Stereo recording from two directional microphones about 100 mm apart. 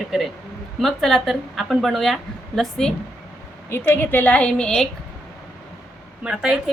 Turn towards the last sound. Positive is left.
turn(degrees=-5)  # may be behind; listen again after turning